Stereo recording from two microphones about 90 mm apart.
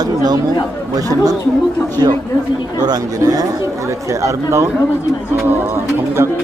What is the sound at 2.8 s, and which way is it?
Speech, 45° right (ahead or behind).